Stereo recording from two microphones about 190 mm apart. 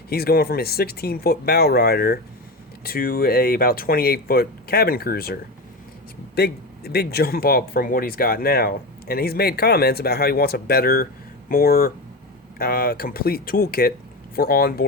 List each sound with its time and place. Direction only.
0.1 s speech: 55° left (ahead or behind)